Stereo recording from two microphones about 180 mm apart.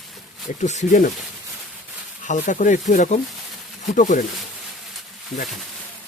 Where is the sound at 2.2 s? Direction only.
45° left (ahead or behind).